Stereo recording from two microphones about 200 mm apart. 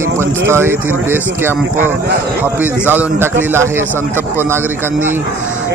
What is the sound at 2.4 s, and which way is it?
Speech, 10° right (ahead or behind).